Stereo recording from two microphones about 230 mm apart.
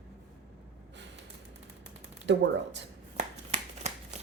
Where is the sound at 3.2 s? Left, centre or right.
Right.